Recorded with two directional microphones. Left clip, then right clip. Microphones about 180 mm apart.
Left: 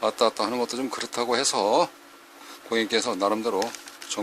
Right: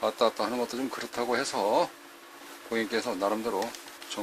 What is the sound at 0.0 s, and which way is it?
Speech, 35° left (ahead or behind).